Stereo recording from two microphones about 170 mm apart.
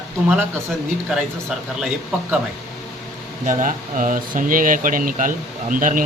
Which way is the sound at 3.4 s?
50° right (ahead or behind).